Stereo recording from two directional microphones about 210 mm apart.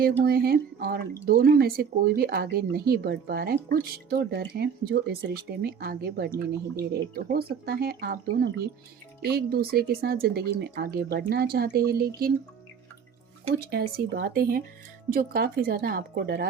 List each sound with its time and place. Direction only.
0.3 s speech: 45° right (ahead or behind)
13.6 s speech: 45° right (ahead or behind)